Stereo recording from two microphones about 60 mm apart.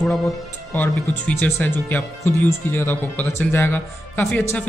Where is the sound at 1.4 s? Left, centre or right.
Left.